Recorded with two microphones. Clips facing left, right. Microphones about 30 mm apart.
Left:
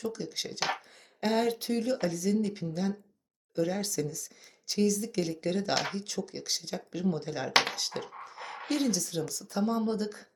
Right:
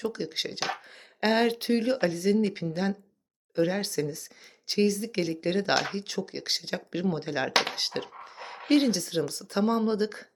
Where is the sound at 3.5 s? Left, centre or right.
Right.